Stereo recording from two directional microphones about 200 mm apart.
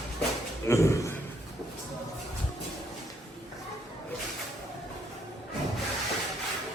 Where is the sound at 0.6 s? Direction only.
15° left (ahead or behind).